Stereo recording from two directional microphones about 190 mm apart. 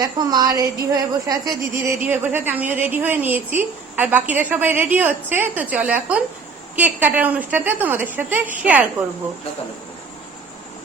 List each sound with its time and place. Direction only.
0.0 s a woman's voice: 20° right (ahead or behind)